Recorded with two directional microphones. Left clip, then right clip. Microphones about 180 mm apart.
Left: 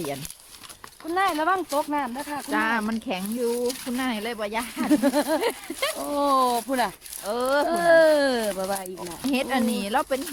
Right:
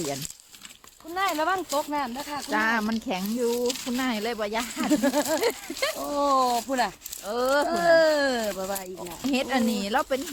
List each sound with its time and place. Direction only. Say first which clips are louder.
1.1 s speech: left 3 dB; 45° left (ahead or behind)
2.5 s speech: even; 5° right (ahead or behind)
4.9 s speech: left 2 dB; 40° left (ahead or behind)
5.4 s speech: even; centre (ahead or behind)
6.1 s speech: left 1 dB; 40° left (ahead or behind)
7.3 s speech: left 1 dB; centre (ahead or behind)
7.7 s speech: left 4 dB; 45° left (ahead or behind)
9.2 s speech: left 1 dB; centre (ahead or behind)